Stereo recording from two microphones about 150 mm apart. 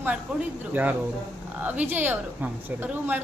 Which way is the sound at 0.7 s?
10° right (ahead or behind).